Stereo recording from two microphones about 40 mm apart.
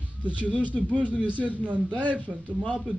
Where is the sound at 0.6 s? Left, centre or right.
Left.